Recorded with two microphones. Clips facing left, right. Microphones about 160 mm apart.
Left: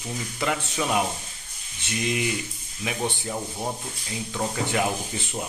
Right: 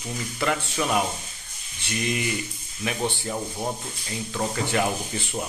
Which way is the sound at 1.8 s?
20° left (ahead or behind).